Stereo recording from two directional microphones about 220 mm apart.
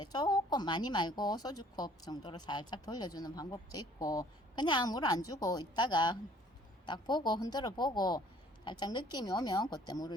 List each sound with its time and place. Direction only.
0.0 s a woman's voice: 20° left (ahead or behind)